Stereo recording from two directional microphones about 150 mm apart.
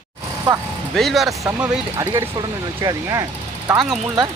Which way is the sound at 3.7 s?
25° right (ahead or behind).